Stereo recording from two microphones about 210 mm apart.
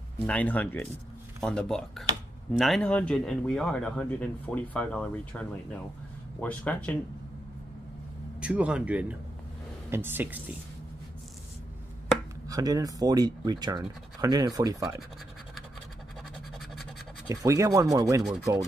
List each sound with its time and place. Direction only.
0.3 s speech: 5° left (ahead or behind)
8.4 s speech: 5° right (ahead or behind)
12.4 s speech: 15° right (ahead or behind)
17.3 s speech: 15° right (ahead or behind)